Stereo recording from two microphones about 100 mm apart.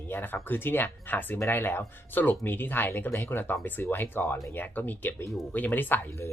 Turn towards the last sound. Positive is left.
turn(degrees=20)  # may be behind; listen again after turning